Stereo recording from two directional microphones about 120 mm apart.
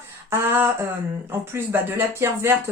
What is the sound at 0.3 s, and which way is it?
Speech, 20° right (ahead or behind).